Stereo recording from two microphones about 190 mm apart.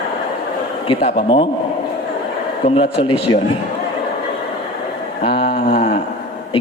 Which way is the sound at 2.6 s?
30° left (ahead or behind).